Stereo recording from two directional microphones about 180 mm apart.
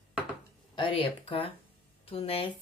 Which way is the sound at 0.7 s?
30° left (ahead or behind).